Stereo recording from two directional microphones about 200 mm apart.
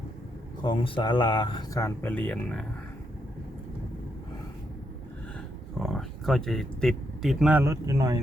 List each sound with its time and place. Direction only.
0.6 s speech: 25° left (ahead or behind); by 2.6 s 5° left (ahead or behind)
5.8 s speech: centre (ahead or behind); by 8.2 s 15° right (ahead or behind)